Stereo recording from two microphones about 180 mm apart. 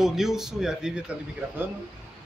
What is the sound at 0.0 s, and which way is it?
Speech, centre (ahead or behind).